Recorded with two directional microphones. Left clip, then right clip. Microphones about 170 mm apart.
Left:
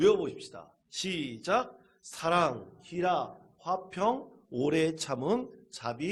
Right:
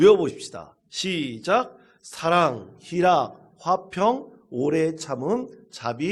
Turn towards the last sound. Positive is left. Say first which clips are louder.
# right 7 dB
turn(degrees=5)  # may be behind; listen again after turning